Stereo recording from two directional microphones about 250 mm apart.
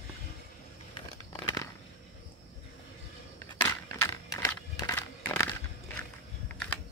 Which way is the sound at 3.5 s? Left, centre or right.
Centre.